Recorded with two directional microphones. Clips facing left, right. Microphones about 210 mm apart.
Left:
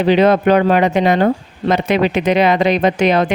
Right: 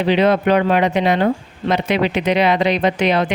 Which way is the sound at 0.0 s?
45° left (ahead or behind).